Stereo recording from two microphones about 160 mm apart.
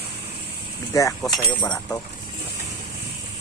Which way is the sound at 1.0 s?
20° left (ahead or behind).